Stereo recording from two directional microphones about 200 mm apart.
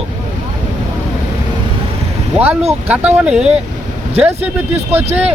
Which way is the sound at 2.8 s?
5° right (ahead or behind).